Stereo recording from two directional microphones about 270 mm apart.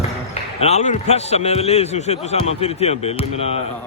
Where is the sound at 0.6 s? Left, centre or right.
Left.